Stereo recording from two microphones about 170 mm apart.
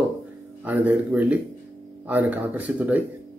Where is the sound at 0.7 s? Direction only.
10° right (ahead or behind).